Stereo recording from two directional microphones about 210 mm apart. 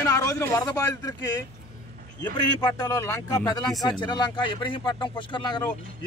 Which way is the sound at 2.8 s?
15° left (ahead or behind).